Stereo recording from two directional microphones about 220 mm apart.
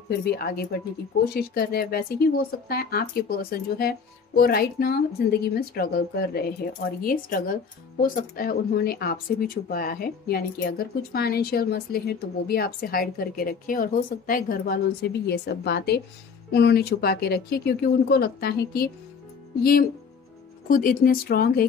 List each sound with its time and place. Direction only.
0.2 s speech: 45° left (ahead or behind)